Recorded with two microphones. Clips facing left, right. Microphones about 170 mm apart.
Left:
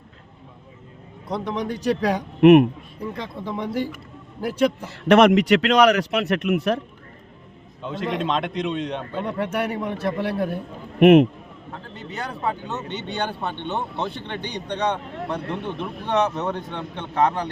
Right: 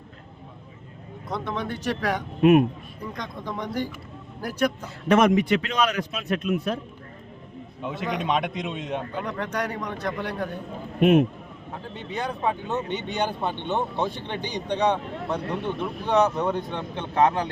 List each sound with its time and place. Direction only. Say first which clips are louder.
1.3 s a man's voice: left 3 dB; 35° left (ahead or behind)
1.6 s speech: left 7 dB; 10° left (ahead or behind)
2.4 s speech: left 5 dB; 70° left (ahead or behind)
3.1 s speech: left 3 dB; 5° left (ahead or behind)
4.4 s a man's voice: left 4 dB; 25° left (ahead or behind)
5.0 s speech: left 4 dB; 70° left (ahead or behind)
7.8 s speech: left 3 dB; 10° right (ahead or behind)
9.2 s a man's voice: left 4 dB; 30° left (ahead or behind)
11.0 s speech: left 6 dB; 75° left (ahead or behind)
12.4 s speech: even; 15° right (ahead or behind)